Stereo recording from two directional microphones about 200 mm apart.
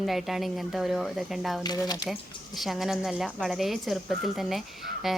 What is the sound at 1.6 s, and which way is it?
Speech, 20° left (ahead or behind).